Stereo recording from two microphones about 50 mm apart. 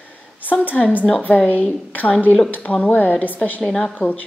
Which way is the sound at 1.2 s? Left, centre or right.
Left.